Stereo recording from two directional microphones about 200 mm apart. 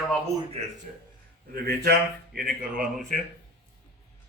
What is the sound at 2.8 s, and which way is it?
Speech, centre (ahead or behind).